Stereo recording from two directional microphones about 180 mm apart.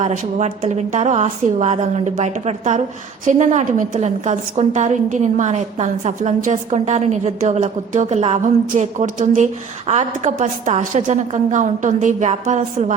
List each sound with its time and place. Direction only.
0.0 s a woman's voice: 40° right (ahead or behind)